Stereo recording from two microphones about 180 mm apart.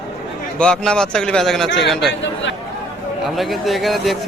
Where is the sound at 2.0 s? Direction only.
80° left.